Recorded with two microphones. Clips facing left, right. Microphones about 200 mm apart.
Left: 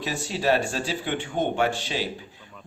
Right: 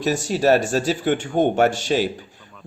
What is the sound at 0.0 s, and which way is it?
Speech, 45° right (ahead or behind).